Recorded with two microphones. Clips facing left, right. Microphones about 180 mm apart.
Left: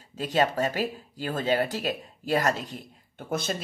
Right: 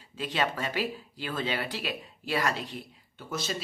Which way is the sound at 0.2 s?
45° left (ahead or behind).